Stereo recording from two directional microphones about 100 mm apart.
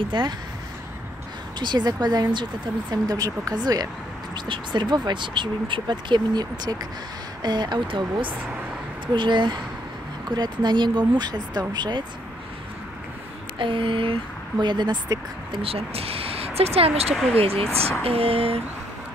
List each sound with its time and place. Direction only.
0.1 s speech: 50° right (ahead or behind)
1.6 s speech: 45° right (ahead or behind)
13.6 s speech: 60° right (ahead or behind)
15.6 s speech: 75° right (ahead or behind)
17.4 s a sound: 75° right (ahead or behind)